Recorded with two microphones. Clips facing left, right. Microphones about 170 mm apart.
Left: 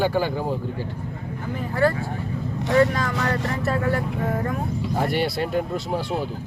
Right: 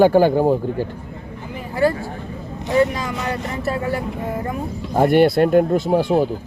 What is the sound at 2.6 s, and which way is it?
Speech, 15° right (ahead or behind).